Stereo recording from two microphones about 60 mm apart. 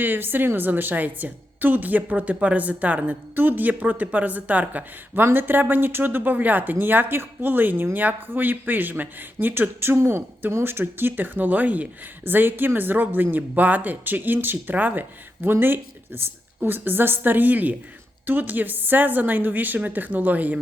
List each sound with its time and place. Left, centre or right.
0.0 s a woman's voice: right